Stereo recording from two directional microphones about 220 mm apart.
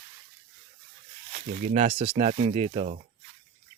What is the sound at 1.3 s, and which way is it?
Speech, 35° right (ahead or behind).